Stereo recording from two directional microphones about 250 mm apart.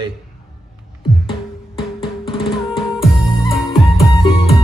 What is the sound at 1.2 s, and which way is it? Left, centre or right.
Music, left.